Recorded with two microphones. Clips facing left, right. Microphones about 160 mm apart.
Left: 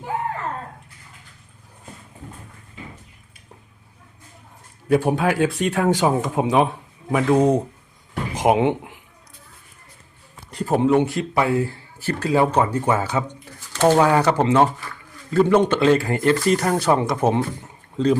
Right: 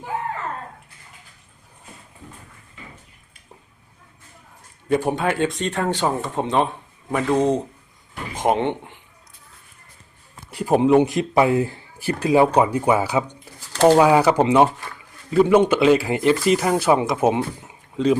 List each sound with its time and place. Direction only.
4.9 s speech: 5° left (ahead or behind)
10.5 s speech: 10° right (ahead or behind)